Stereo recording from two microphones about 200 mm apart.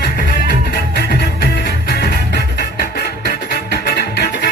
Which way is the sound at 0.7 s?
50° left (ahead or behind).